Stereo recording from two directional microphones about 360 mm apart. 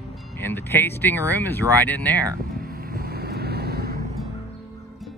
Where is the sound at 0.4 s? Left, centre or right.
Centre.